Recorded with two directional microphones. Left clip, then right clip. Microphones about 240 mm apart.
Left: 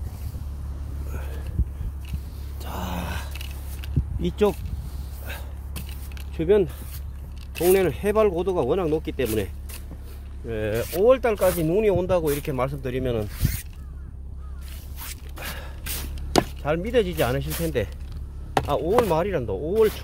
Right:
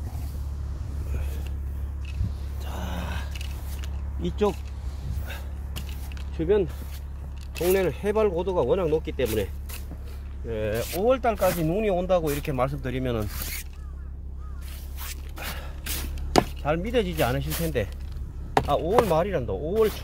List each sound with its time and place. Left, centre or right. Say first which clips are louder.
2.6 s a sound: left 4 dB; left
4.2 s speech: left 3 dB; left
5.2 s a sound: left 3 dB; left
7.5 s speech: left 4 dB; left
10.5 s speech: left 2 dB; left
15.3 s spray: left 1 dB; left
16.6 s speech: left 3 dB; left
18.9 s speech: left 1 dB; left